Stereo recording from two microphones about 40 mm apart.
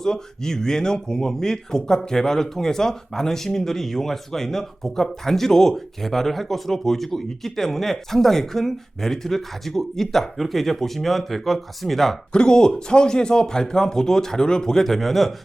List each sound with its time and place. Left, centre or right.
0.0 s speech: centre
12.3 s speech: left; by 15.3 s centre